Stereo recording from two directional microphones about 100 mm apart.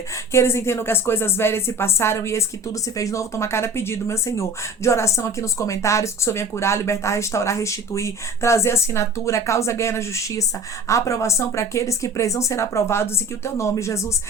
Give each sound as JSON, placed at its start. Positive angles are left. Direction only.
{"t": 0.3, "sound": "speech", "side_deg": 25}